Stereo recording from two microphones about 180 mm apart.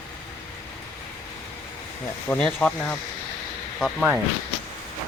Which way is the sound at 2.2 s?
5° left (ahead or behind).